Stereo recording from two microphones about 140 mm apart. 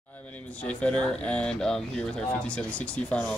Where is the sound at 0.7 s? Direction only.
10° left (ahead or behind).